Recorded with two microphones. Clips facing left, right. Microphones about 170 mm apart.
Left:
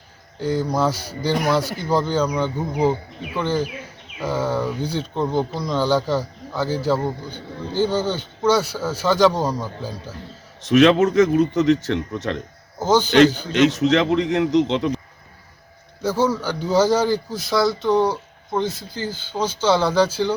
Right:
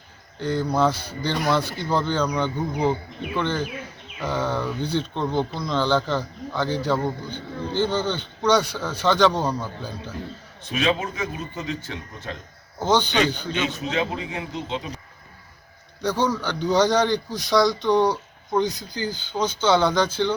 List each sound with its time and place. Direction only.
0.3 s a man's voice: 10° left (ahead or behind)
10.6 s a man's voice: 80° left
12.8 s a man's voice: 5° left (ahead or behind)
13.5 s a man's voice: 80° left
16.0 s a man's voice: 5° left (ahead or behind)